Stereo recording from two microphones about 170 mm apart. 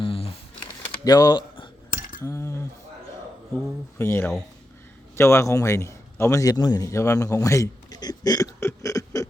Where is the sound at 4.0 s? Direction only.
15° left (ahead or behind).